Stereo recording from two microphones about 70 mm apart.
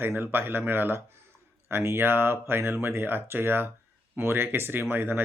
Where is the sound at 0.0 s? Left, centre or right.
Right.